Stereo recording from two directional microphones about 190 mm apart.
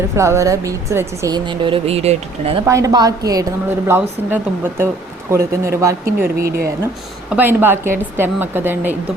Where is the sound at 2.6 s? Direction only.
15° right (ahead or behind).